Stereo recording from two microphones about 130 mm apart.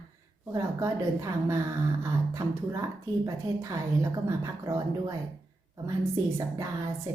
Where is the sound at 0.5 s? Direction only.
25° right (ahead or behind).